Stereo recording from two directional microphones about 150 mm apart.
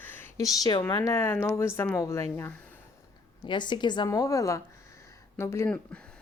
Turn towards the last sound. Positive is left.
turn(degrees=15)  # may be behind; listen again after turning